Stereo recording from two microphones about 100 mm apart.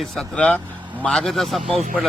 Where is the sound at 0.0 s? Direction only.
5° left (ahead or behind).